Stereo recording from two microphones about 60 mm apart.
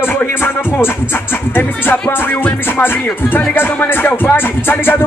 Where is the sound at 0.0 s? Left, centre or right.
Left.